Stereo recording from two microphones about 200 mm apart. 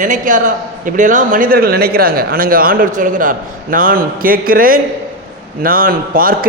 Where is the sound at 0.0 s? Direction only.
40° right (ahead or behind).